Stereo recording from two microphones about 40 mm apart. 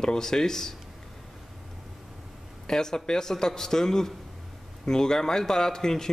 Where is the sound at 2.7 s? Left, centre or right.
Centre.